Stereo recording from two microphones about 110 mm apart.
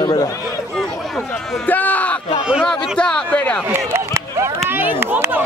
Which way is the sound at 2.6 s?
5° left (ahead or behind).